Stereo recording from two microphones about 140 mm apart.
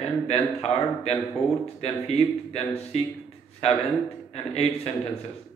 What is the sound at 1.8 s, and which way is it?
Speech, 50° left (ahead or behind).